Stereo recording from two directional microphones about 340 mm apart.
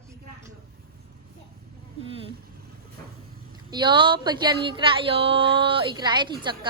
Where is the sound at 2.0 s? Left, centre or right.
Centre.